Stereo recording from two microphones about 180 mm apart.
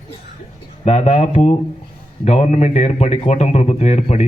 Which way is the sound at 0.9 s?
35° left (ahead or behind).